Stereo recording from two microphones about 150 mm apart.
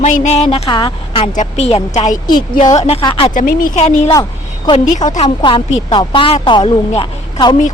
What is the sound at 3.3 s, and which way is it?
Speech, 65° left (ahead or behind).